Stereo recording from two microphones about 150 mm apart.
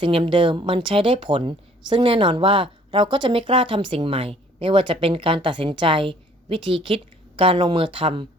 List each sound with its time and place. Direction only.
0.0 s speech: 35° right (ahead or behind)